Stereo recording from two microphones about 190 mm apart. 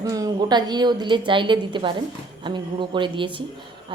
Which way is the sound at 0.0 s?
20° right (ahead or behind).